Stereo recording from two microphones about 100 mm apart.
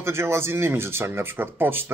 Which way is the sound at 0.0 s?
25° right (ahead or behind).